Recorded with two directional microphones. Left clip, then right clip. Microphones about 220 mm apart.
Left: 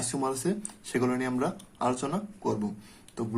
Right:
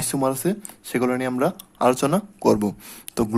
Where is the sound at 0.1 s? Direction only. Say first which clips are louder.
Right 8 dB; 40° right (ahead or behind).